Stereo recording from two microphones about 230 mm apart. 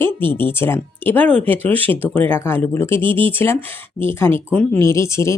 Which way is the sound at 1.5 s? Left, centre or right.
Right.